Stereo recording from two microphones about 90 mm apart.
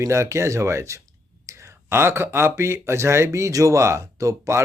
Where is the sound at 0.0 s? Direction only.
30° right (ahead or behind).